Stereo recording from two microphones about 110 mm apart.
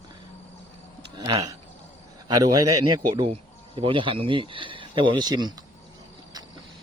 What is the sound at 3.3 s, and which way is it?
Speech, 55° right (ahead or behind).